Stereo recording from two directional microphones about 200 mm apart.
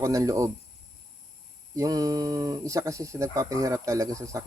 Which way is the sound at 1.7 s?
15° right (ahead or behind).